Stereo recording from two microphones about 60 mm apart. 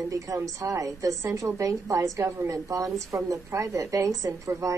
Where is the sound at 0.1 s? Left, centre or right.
Right.